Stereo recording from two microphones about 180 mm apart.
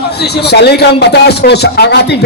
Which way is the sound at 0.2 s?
65° left (ahead or behind).